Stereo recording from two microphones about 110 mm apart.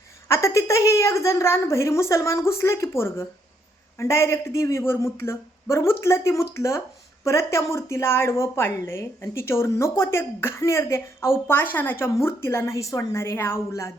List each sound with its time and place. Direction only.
0.3 s a woman's voice: 25° left (ahead or behind)